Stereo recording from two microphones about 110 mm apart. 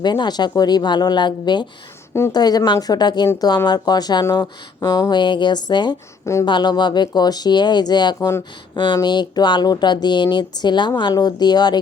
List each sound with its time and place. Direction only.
0.0 s speech: 40° left (ahead or behind)